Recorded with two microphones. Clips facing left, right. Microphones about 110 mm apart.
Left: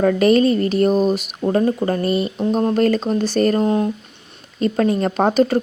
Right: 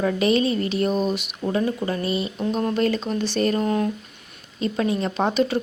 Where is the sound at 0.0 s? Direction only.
50° left (ahead or behind).